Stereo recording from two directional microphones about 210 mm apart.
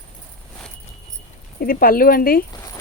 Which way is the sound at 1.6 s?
45° left (ahead or behind).